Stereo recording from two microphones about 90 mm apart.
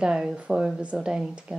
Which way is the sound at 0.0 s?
5° right (ahead or behind).